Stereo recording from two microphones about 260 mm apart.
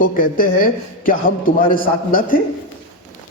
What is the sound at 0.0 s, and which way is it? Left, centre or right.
A man's voice, left.